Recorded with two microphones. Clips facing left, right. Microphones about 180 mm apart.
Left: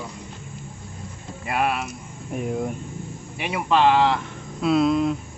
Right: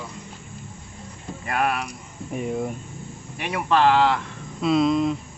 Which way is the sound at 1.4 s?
5° left (ahead or behind).